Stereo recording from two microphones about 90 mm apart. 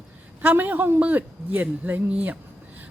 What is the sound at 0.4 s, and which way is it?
A woman's voice, 20° right (ahead or behind).